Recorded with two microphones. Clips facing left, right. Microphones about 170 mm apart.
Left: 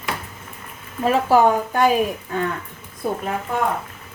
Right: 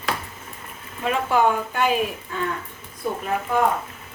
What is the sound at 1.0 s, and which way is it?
Speech, 40° left (ahead or behind).